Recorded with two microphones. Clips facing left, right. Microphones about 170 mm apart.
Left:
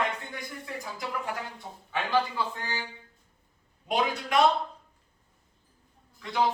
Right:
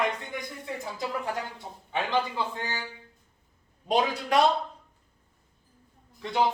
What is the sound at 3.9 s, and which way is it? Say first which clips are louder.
Speech: right 3 dB; 30° right (ahead or behind).